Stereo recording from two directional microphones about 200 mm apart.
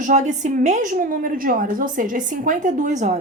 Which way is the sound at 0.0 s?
35° right (ahead or behind).